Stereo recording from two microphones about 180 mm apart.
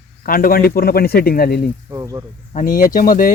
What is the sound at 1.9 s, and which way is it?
Speech, 15° right (ahead or behind).